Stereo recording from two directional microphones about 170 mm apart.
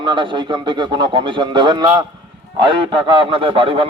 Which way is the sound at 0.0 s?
30° right (ahead or behind).